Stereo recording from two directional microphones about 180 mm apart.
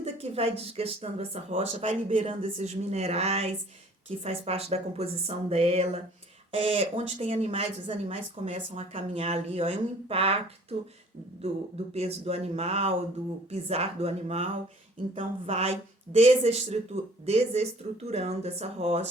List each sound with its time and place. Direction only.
0.0 s speech: 35° right (ahead or behind)
11.9 s speech: 35° right (ahead or behind)